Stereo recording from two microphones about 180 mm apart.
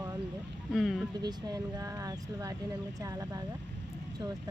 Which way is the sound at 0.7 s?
Centre (ahead or behind).